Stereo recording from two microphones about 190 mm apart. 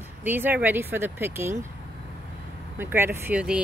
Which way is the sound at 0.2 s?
10° right (ahead or behind).